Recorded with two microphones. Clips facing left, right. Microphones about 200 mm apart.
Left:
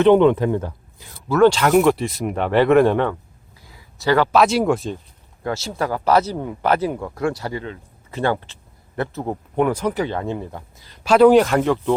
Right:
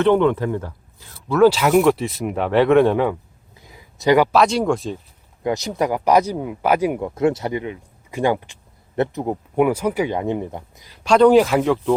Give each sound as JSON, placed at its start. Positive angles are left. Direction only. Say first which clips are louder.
{"t": 0.0, "sound": "speech", "louder": "left 3 dB", "side_deg": 20}
{"t": 1.3, "sound": "speech", "louder": "even", "side_deg": -5}
{"t": 3.6, "sound": "a sound", "louder": "right 4 dB", "side_deg": -20}
{"t": 4.3, "sound": "speech", "louder": "left 1 dB", "side_deg": 5}
{"t": 5.4, "sound": "speech", "louder": "right 3 dB", "side_deg": -20}
{"t": 11.0, "sound": "speech", "louder": "even", "side_deg": 5}